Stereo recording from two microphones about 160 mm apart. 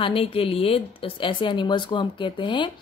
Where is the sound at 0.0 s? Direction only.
35° left (ahead or behind).